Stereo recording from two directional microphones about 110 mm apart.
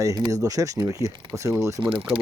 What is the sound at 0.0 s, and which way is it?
Speech, 30° right (ahead or behind).